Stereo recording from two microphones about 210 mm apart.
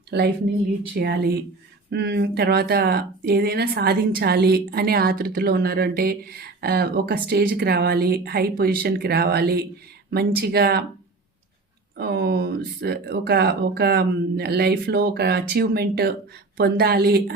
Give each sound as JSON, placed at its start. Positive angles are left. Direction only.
{"t": 0.1, "sound": "speech", "side_deg": -55}
{"t": 11.9, "sound": "speech", "side_deg": -50}